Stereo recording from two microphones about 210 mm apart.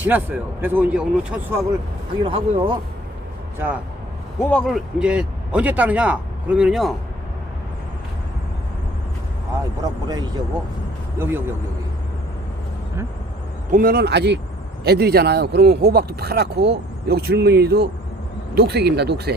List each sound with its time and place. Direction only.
0.0 s speech: 10° right (ahead or behind)
2.2 s speech: 25° right (ahead or behind)
4.4 s a man's voice: 5° left (ahead or behind)
9.8 s speech: 20° right (ahead or behind)
13.7 s a man's voice: 40° right (ahead or behind)